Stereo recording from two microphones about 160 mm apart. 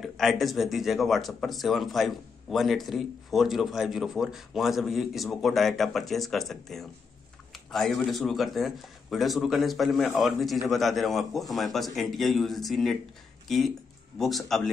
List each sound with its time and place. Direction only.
0.0 s speech: centre (ahead or behind)